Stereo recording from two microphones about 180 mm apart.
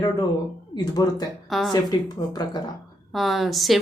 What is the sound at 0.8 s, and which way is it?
Speech, 20° left (ahead or behind).